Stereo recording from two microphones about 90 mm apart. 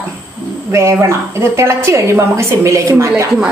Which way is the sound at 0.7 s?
35° right (ahead or behind).